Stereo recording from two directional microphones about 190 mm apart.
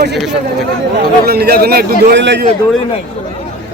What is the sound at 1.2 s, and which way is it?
A man's voice, 55° right (ahead or behind).